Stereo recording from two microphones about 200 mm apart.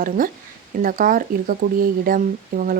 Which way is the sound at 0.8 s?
45° right (ahead or behind).